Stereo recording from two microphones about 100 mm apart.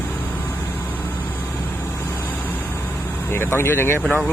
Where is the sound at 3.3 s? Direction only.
25° left (ahead or behind).